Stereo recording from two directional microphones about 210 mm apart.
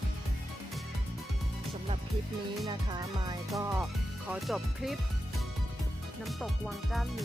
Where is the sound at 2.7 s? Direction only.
20° right (ahead or behind).